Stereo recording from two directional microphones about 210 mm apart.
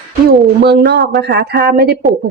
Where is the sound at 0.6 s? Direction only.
50° right (ahead or behind).